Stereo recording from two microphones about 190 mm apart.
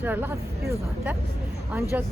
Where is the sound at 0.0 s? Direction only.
10° right (ahead or behind).